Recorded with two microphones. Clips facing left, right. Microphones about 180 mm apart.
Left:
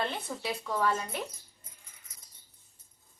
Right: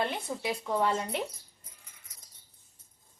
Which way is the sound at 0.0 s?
15° right (ahead or behind).